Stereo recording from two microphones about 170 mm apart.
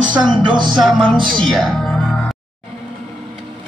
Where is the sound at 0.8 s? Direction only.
Centre (ahead or behind).